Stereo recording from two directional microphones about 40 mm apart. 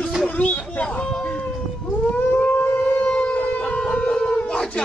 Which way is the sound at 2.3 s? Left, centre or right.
Left.